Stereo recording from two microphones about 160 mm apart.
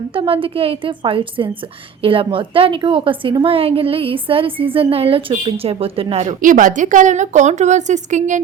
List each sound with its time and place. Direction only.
0.1 s a woman's voice: 35° right (ahead or behind)